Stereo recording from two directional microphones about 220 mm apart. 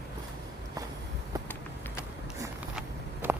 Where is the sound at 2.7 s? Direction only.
10° right (ahead or behind).